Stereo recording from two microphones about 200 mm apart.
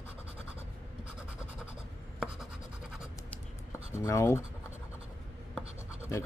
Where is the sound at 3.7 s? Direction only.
15° left (ahead or behind).